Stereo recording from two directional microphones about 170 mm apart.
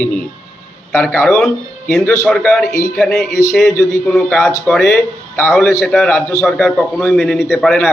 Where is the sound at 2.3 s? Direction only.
5° left (ahead or behind).